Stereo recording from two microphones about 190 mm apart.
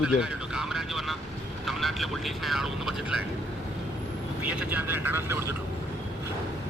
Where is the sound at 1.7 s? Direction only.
Centre (ahead or behind).